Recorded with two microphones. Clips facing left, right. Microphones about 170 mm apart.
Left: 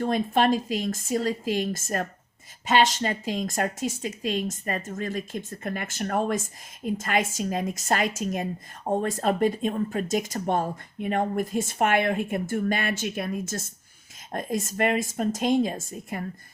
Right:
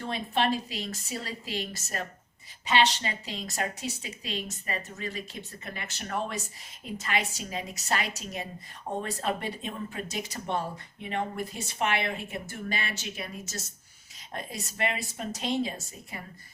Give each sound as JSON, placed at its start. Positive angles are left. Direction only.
{"t": 0.0, "sound": "a woman's voice", "side_deg": 45}